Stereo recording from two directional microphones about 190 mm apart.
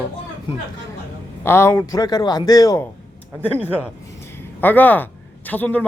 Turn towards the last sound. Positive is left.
turn(degrees=10)  # may be behind; listen again after turning